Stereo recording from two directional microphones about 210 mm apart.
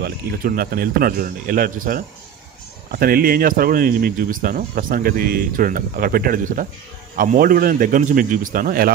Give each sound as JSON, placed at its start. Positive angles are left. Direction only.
{"t": 0.0, "sound": "a man's voice", "side_deg": -45}